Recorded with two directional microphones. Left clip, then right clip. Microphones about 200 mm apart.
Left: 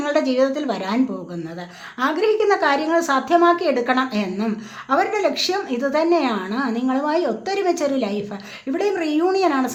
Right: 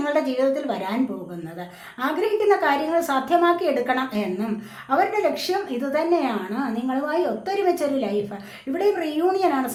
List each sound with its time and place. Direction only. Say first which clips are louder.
0.0 s speech: left 3 dB; 35° left (ahead or behind)
2.0 s a woman's voice: left 4 dB; 35° left (ahead or behind)